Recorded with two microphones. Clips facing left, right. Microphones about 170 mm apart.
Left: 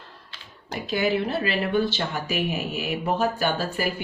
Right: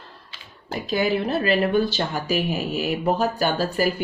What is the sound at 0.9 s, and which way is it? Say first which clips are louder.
Speech: right 2 dB; 40° right (ahead or behind).